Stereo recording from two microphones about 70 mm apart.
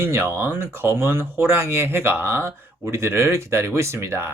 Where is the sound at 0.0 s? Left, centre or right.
Right.